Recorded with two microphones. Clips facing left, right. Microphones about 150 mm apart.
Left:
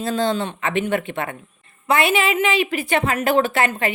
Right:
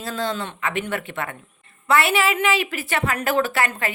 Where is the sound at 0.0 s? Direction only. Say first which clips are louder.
Left 5 dB; 25° left (ahead or behind).